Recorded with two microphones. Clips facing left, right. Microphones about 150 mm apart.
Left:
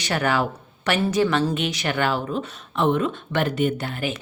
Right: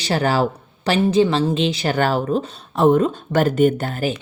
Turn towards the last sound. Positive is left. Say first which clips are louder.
# right 5 dB
turn(degrees=-40)  # may be behind; listen again after turning